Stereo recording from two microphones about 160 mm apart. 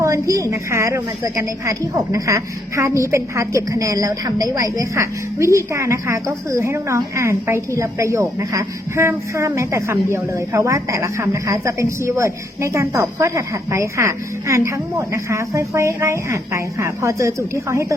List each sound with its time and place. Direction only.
0.0 s a woman's voice: 20° right (ahead or behind)